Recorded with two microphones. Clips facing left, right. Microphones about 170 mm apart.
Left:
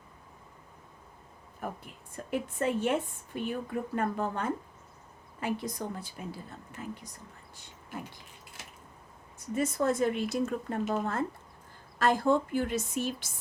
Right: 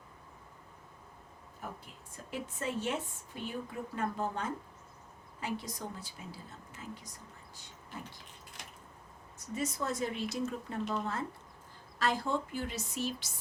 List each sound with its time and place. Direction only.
1.8 s speech: 55° left (ahead or behind)
9.6 s a woman's voice: 55° left (ahead or behind)